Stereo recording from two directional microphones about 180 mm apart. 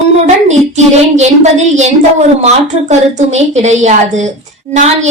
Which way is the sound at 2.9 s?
40° right (ahead or behind).